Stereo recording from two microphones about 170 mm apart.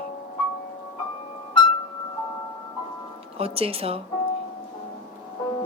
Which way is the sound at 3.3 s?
35° right (ahead or behind).